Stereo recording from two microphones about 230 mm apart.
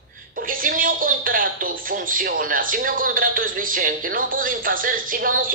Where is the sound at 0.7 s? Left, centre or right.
Right.